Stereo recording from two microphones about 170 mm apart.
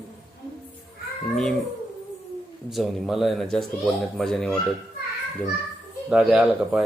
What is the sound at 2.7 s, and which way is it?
Speech, centre (ahead or behind).